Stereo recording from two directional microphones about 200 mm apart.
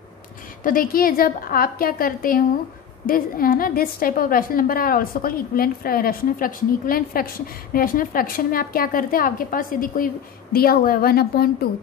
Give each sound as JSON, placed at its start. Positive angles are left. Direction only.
{"t": 0.7, "sound": "a woman's voice", "side_deg": 45}